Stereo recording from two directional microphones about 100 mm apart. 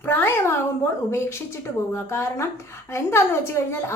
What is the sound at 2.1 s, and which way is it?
A woman's voice, 25° left (ahead or behind).